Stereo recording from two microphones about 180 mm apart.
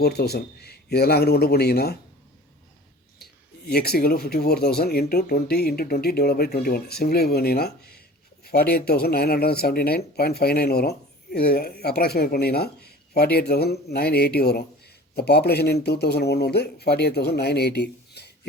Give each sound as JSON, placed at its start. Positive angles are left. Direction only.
{"t": 0.0, "sound": "speech", "side_deg": 60}
{"t": 3.7, "sound": "speech", "side_deg": 60}